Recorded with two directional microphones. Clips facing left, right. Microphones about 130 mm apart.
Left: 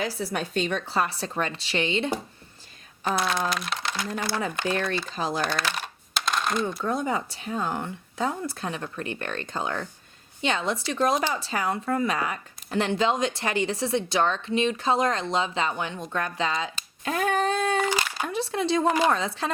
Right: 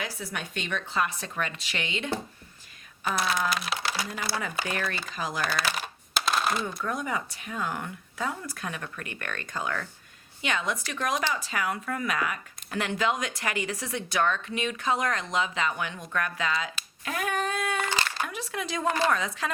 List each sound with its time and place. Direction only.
0.0 s speech: 30° left (ahead or behind)
3.2 s speech: 5° right (ahead or behind)
5.1 s speech: 30° left (ahead or behind)
5.5 s a sound: 5° right (ahead or behind)
6.8 s speech: 30° left (ahead or behind)
17.8 s a sound: 10° left (ahead or behind)
18.3 s speech: 30° left (ahead or behind)
18.9 s speech: 15° left (ahead or behind)
19.1 s speech: 30° left (ahead or behind)